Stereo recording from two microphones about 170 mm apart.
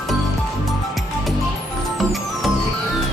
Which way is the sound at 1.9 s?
Centre (ahead or behind).